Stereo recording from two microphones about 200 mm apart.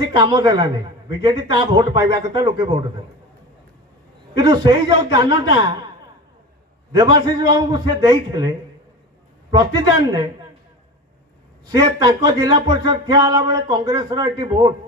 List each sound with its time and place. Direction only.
0.0 s speech: 20° right (ahead or behind)
4.4 s speech: 20° right (ahead or behind)
7.0 s speech: 20° right (ahead or behind)
11.7 s speech: 20° right (ahead or behind)